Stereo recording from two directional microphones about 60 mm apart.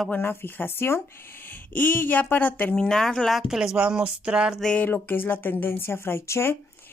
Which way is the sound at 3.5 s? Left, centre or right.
Centre.